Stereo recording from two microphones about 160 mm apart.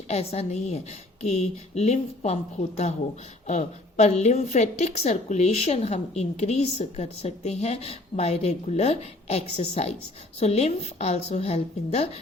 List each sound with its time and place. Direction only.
0.1 s a woman's voice: 40° left (ahead or behind)